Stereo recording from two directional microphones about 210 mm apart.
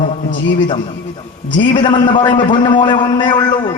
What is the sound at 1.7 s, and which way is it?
A man's voice, 20° left (ahead or behind).